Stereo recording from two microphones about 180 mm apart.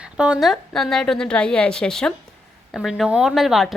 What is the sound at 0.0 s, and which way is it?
Speech, 5° right (ahead or behind).